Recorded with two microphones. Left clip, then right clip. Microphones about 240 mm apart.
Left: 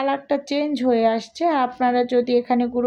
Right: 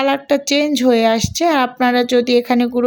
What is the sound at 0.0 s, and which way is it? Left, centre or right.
Speech, right.